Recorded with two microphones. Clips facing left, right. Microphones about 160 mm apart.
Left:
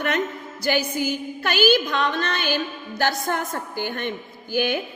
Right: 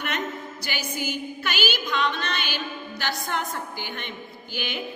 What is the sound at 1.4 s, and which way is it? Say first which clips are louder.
A woman's voice: left 12 dB; 45° left (ahead or behind).